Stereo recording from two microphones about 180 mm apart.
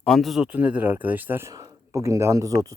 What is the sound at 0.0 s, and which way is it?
Speech, centre (ahead or behind).